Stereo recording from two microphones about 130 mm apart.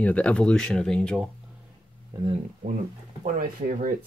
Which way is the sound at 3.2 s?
90° right.